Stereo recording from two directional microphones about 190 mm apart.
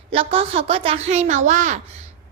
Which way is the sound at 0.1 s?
30° right (ahead or behind).